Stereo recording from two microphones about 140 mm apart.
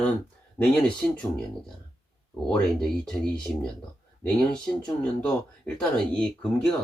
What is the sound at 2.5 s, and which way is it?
Speech, 5° left (ahead or behind).